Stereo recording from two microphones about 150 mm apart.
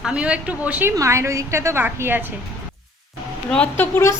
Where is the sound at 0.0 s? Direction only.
10° right (ahead or behind).